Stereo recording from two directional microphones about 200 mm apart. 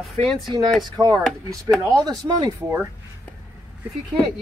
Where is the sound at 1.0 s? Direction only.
20° right (ahead or behind).